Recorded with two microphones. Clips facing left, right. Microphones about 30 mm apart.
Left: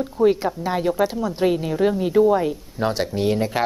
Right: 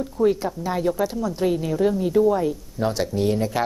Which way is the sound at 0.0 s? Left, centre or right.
Left.